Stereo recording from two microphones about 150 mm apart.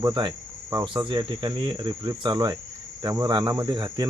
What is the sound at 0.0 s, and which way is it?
Cricket, 30° right (ahead or behind).